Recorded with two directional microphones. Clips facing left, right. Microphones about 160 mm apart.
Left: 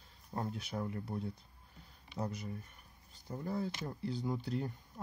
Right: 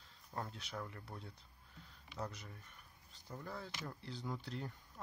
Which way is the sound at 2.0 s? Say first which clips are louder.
Left 5 dB; 25° left (ahead or behind).